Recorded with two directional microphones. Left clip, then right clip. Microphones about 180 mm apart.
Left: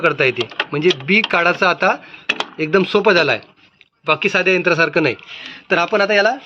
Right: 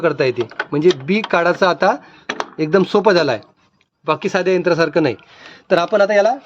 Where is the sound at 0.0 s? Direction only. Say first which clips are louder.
Left 1 dB; 60° right (ahead or behind).